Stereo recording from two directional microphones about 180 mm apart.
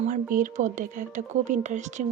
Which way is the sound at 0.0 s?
45° right (ahead or behind).